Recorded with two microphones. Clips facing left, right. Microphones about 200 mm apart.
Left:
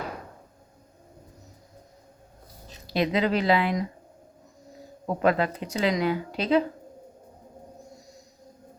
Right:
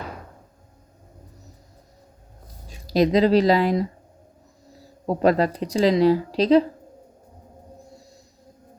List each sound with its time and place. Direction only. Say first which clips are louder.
2.8 s speech: right 7 dB; 40° right (ahead or behind)
5.0 s speech: right 4 dB; 35° right (ahead or behind)